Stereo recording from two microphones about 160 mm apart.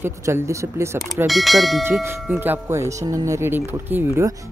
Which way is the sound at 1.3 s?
Centre (ahead or behind).